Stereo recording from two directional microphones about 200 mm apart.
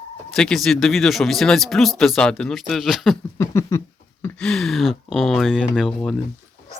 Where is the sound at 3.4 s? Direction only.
15° left (ahead or behind).